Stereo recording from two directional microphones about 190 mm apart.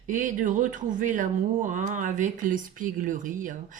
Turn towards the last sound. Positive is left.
turn(degrees=-45)  # may be behind; listen again after turning